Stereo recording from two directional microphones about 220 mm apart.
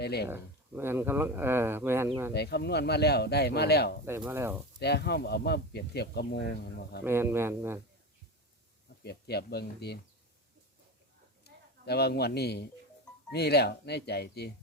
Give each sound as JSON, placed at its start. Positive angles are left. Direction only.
{"t": 0.0, "sound": "speech", "side_deg": 45}
{"t": 0.3, "sound": "speech", "side_deg": -10}
{"t": 2.3, "sound": "speech", "side_deg": 50}
{"t": 4.3, "sound": "speech", "side_deg": -10}
{"t": 4.8, "sound": "speech", "side_deg": 50}
{"t": 7.0, "sound": "speech", "side_deg": -10}
{"t": 9.0, "sound": "speech", "side_deg": 45}
{"t": 11.9, "sound": "speech", "side_deg": 45}